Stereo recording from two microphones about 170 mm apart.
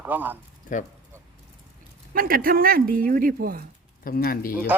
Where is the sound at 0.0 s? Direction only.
10° right (ahead or behind).